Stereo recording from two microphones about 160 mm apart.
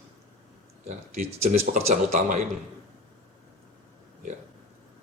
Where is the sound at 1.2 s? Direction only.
45° right (ahead or behind).